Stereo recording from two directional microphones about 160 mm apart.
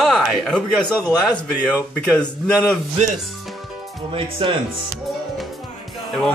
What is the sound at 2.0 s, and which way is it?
Speech, 5° left (ahead or behind).